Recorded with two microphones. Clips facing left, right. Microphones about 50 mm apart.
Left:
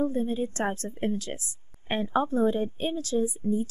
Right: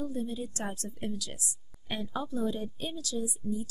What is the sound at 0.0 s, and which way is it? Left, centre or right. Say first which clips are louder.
A woman's voice: left 8 dB; left.